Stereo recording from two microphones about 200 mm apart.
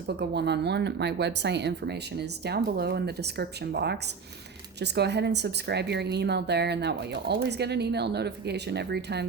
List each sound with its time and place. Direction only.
0.2 s a woman's voice: 55° right (ahead or behind)